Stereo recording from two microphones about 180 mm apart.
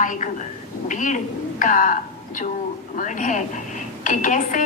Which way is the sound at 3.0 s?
45° left (ahead or behind).